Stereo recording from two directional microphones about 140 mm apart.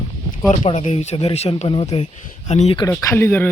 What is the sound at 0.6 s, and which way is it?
Speech, 50° left (ahead or behind).